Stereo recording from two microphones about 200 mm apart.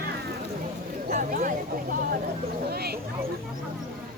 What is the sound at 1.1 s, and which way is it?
Speech, 40° right (ahead or behind).